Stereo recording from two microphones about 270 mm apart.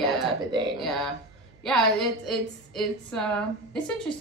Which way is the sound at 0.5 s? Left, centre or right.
Centre.